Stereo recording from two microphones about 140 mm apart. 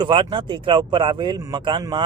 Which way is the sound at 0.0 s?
35° right (ahead or behind).